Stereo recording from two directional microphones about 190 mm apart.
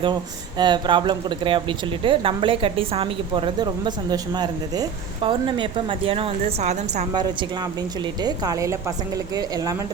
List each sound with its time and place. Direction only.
0.6 s a woman's voice: 25° right (ahead or behind)
8.2 s a woman's voice: 20° right (ahead or behind)